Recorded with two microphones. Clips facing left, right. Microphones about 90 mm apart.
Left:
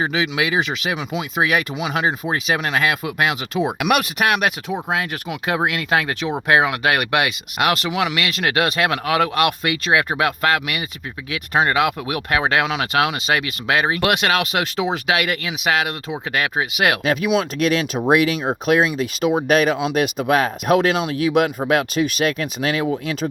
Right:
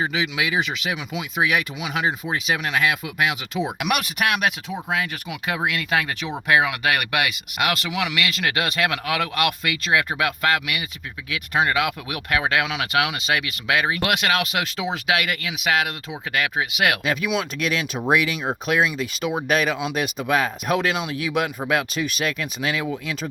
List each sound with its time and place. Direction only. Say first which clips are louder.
0.1 s speech: left 3 dB; 45° left (ahead or behind)
5.5 s speech: left 4 dB; 40° left (ahead or behind)
19.5 s speech: left 5 dB; 50° left (ahead or behind)